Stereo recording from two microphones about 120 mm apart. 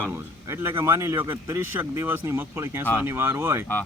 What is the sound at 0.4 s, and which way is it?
A man's voice, 20° right (ahead or behind).